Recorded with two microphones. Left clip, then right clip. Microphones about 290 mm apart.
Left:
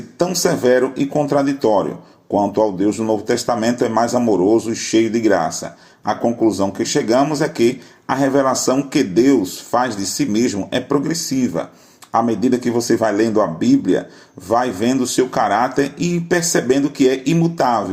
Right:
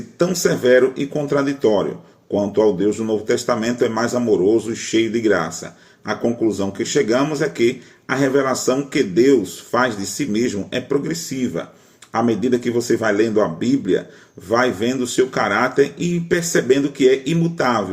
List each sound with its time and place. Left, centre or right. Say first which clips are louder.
0.2 s speech: left 1 dB; left